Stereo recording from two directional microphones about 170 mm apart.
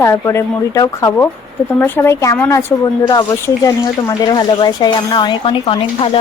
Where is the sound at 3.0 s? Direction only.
25° left (ahead or behind).